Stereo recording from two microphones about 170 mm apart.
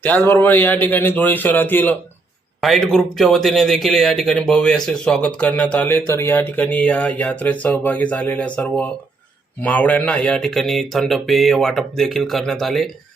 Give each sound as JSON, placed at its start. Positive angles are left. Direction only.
{"t": 0.0, "sound": "speech", "side_deg": 10}
{"t": 2.6, "sound": "speech", "side_deg": 0}